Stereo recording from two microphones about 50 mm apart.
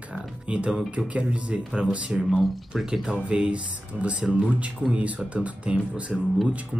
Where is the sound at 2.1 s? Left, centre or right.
Centre; by 6.2 s right.